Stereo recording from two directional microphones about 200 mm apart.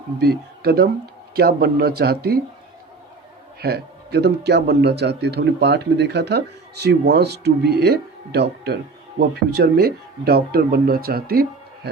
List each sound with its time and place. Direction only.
0.2 s speech: 55° right (ahead or behind)
3.6 s a man's voice: 55° right (ahead or behind)